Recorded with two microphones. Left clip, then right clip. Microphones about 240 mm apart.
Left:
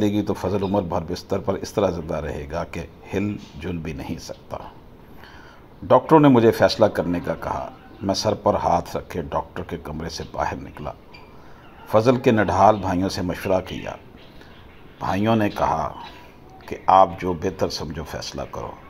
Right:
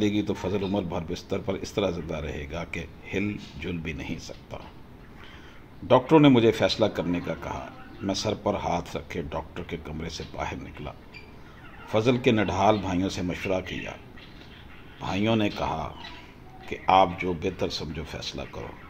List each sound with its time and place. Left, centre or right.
0.0 s speech: centre
5.9 s speech: centre
15.0 s speech: centre